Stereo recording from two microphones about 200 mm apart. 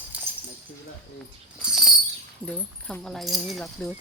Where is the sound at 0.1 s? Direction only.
5° right (ahead or behind).